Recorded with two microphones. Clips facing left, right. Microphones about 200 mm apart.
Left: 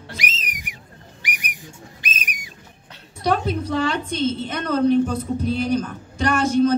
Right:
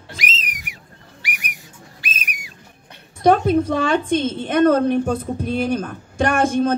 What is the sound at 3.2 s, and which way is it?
A woman's voice, 50° right (ahead or behind).